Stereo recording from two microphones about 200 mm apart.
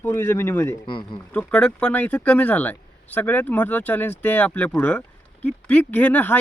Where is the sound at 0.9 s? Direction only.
25° left (ahead or behind).